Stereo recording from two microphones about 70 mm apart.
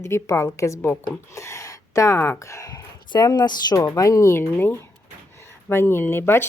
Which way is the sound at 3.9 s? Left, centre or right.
Left.